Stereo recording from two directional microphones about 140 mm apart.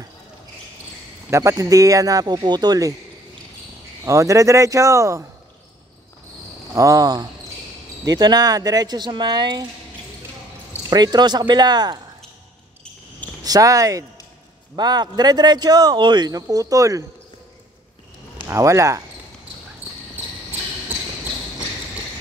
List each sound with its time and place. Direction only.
1.3 s speech: 20° right (ahead or behind)
4.0 s speech: 20° right (ahead or behind)
6.7 s speech: 25° right (ahead or behind)
10.7 s speech: 25° right (ahead or behind)
13.4 s speech: 25° right (ahead or behind)
18.5 s speech: 20° right (ahead or behind)